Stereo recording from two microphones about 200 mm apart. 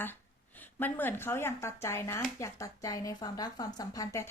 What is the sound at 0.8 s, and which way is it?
A woman's voice, 10° left (ahead or behind).